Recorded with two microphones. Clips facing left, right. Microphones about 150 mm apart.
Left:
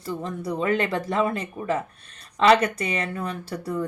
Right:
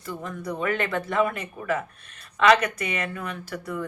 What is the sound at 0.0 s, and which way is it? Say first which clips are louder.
Speech: left 3 dB; 30° left (ahead or behind).